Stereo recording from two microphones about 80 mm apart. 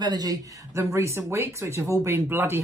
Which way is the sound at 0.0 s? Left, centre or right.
Right.